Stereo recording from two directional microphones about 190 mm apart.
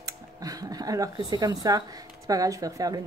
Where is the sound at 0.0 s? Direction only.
20° right (ahead or behind).